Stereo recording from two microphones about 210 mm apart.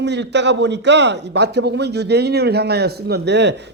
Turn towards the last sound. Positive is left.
turn(degrees=-55)  # may be behind; listen again after turning